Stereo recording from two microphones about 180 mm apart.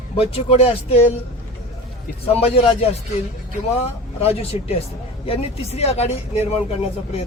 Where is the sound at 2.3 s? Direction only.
35° left (ahead or behind).